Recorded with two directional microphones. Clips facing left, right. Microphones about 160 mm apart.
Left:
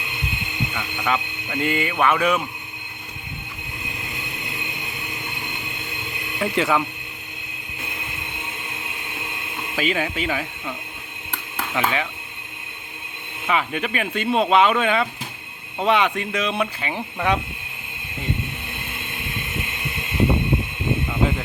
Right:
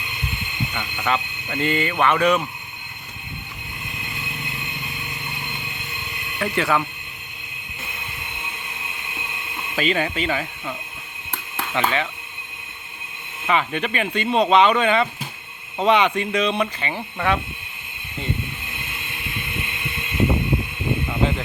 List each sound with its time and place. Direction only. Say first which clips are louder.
0.7 s speech: right 1 dB; centre (ahead or behind)
6.4 s speech: left 1 dB; 15° left (ahead or behind)
9.7 s speech: right 1 dB; 5° left (ahead or behind)
11.7 s speech: right 1 dB; 5° left (ahead or behind)
13.5 s speech: right 1 dB; 5° left (ahead or behind)